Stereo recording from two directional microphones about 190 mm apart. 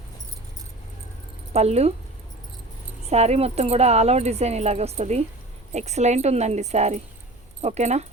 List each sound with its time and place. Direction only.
1.5 s speech: 35° right (ahead or behind)
3.1 s speech: 35° right (ahead or behind)